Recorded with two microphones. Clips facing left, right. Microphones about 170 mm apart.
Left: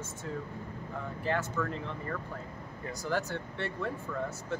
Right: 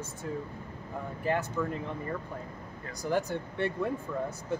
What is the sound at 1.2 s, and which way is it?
Speech, 15° right (ahead or behind).